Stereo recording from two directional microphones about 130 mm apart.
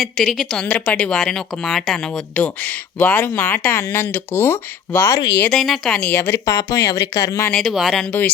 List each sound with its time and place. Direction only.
0.0 s speech: centre (ahead or behind)
5.5 s speech: centre (ahead or behind)
6.4 s speech: 25° left (ahead or behind)
7.5 s speech: centre (ahead or behind)